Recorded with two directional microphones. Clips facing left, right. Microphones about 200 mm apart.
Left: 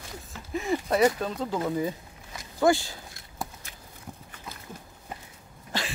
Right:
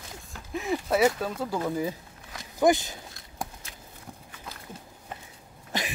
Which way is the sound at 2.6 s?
20° right (ahead or behind).